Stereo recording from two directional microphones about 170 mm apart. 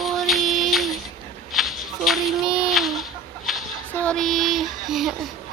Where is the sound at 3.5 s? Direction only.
Centre (ahead or behind).